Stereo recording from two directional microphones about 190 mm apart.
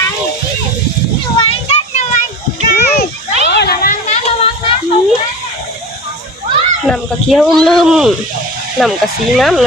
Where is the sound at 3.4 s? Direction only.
60° left (ahead or behind).